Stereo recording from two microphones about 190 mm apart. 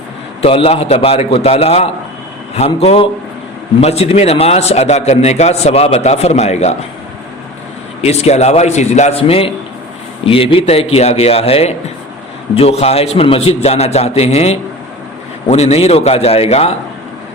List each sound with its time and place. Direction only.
0.4 s a man's voice: 30° left (ahead or behind)
8.0 s a man's voice: 35° left (ahead or behind)